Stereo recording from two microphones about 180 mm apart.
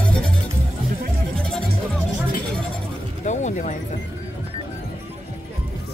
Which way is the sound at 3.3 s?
40° left (ahead or behind).